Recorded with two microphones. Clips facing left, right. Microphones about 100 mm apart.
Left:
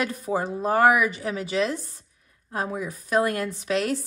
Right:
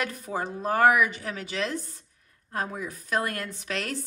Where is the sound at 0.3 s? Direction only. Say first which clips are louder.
Left 5 dB; 5° left (ahead or behind).